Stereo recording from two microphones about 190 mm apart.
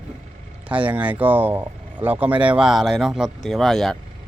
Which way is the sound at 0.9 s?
10° right (ahead or behind).